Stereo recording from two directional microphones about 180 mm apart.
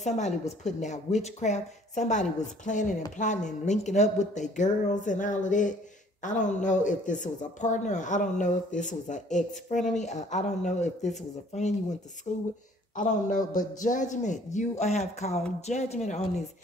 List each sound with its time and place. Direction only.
0.0 s speech: 40° left (ahead or behind)
12.9 s speech: 45° left (ahead or behind)